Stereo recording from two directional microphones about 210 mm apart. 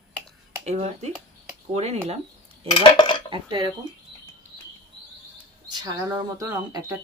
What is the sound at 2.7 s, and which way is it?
Cutlery, 20° left (ahead or behind).